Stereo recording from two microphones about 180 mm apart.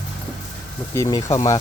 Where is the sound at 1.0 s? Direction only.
15° left (ahead or behind).